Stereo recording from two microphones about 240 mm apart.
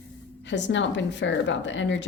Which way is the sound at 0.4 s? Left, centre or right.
Left.